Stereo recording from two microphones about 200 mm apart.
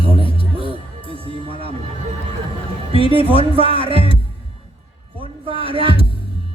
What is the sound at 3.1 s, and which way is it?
Speech, 25° right (ahead or behind).